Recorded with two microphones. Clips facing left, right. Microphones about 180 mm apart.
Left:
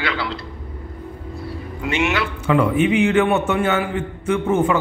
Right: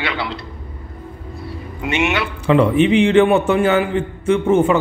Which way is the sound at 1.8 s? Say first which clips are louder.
Right 2 dB; 20° right (ahead or behind).